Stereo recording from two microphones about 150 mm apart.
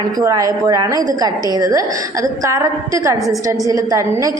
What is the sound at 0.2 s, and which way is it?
A woman's voice, 25° right (ahead or behind).